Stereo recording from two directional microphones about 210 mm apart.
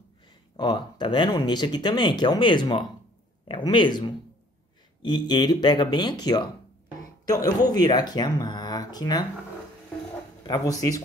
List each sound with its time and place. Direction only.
0.6 s speech: 20° left (ahead or behind)
10.4 s speech: 20° left (ahead or behind)